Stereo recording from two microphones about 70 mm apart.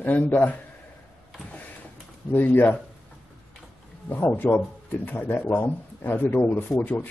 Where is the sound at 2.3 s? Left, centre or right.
Left.